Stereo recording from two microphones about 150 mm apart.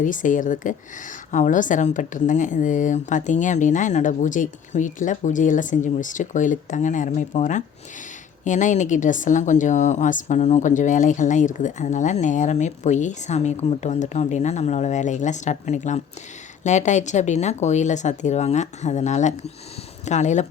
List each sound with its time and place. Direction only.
0.0 s speech: 60° left (ahead or behind)